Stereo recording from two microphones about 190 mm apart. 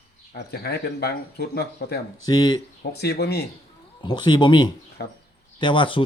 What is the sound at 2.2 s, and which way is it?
Speech, 20° left (ahead or behind).